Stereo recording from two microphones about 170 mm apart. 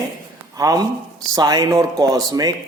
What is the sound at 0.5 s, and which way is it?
A man's voice, 20° right (ahead or behind).